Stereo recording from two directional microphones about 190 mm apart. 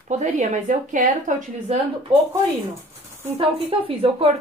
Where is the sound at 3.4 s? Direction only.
30° right (ahead or behind).